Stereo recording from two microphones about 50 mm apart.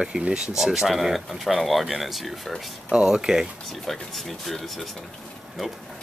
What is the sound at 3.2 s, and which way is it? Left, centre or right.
Speech, centre.